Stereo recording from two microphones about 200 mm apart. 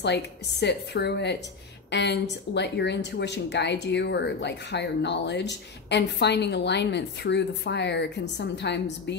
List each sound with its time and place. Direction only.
0.0 s speech: 55° left (ahead or behind)